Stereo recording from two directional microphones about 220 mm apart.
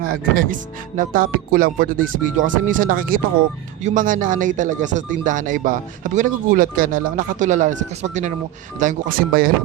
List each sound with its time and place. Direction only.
0.0 s speech: 40° right (ahead or behind)